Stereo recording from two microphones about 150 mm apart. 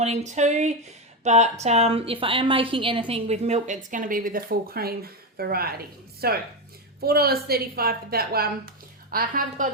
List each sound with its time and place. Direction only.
0.0 s a woman's voice: 50° right (ahead or behind); by 9.6 s 70° right (ahead or behind)